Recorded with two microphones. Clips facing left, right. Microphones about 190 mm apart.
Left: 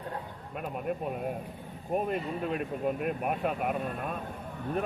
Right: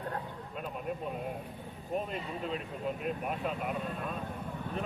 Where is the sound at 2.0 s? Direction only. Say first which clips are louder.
Left 5 dB; 55° left (ahead or behind).